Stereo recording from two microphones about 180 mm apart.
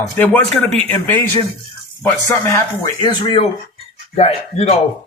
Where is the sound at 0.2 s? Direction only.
5° left (ahead or behind).